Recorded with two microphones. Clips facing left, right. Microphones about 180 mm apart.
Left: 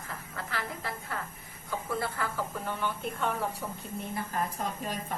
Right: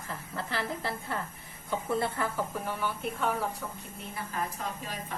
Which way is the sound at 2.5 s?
10° right (ahead or behind).